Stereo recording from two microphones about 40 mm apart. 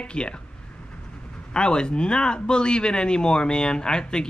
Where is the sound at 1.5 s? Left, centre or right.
Left.